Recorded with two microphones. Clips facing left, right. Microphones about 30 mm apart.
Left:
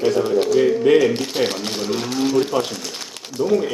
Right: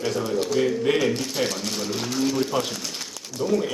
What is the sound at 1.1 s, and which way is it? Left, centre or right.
A man's voice, left.